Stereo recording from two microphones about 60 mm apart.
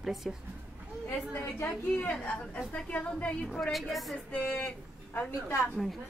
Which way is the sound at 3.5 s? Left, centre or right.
Centre.